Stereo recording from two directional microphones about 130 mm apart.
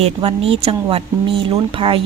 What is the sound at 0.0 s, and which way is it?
Speech, 50° right (ahead or behind).